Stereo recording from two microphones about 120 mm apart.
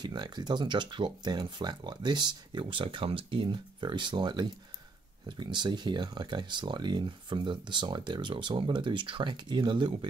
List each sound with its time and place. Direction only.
0.0 s speech: 40° right (ahead or behind)